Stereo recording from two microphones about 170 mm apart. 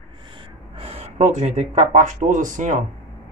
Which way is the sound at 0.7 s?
35° right (ahead or behind).